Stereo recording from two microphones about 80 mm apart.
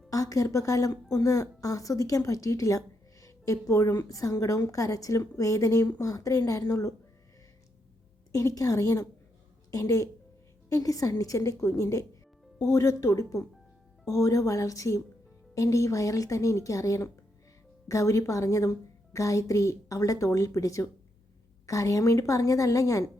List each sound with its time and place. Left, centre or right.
0.1 s a woman's voice: left
8.3 s a woman's voice: left